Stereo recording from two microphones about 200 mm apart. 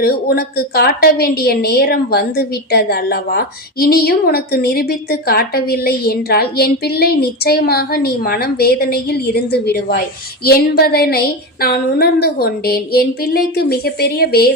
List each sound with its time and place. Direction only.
0.0 s a woman's voice: 50° left (ahead or behind)